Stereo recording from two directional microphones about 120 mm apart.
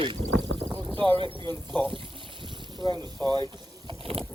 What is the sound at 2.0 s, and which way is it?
Water, 45° right (ahead or behind).